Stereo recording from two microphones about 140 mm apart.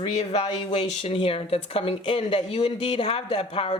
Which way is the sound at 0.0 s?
45° left (ahead or behind).